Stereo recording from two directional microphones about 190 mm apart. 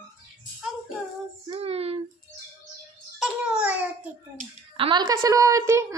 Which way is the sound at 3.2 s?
5° right (ahead or behind).